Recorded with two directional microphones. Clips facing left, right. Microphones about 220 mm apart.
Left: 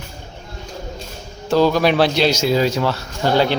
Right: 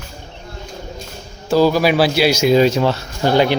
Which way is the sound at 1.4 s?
5° right (ahead or behind).